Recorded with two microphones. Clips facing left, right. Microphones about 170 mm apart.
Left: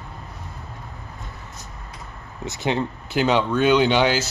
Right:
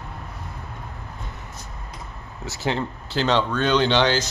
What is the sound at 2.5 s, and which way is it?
Speech, 20° left (ahead or behind).